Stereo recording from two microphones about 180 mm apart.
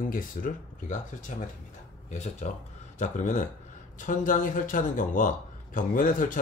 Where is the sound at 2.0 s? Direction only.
40° left (ahead or behind).